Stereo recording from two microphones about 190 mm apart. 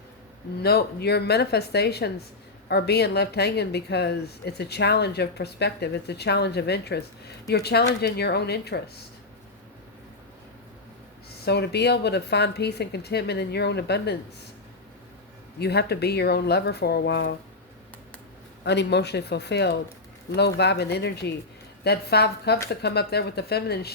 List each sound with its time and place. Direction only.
0.6 s a woman's voice: 55° left (ahead or behind)
11.4 s a woman's voice: 60° left (ahead or behind)
15.6 s a woman's voice: 60° left (ahead or behind)
18.6 s a woman's voice: 60° left (ahead or behind)